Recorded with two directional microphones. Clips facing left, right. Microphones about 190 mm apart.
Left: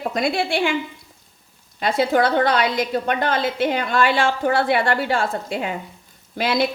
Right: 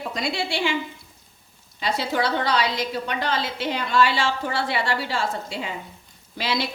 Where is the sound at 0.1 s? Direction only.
55° left (ahead or behind).